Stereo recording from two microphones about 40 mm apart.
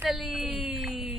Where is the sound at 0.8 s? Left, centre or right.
Centre.